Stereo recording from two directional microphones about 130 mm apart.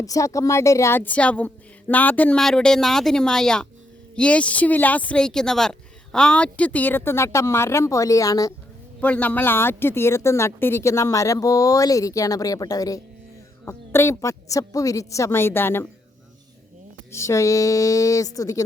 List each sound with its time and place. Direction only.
0.0 s speech: 25° left (ahead or behind)
9.0 s speech: 10° left (ahead or behind)
17.1 s speech: 20° left (ahead or behind)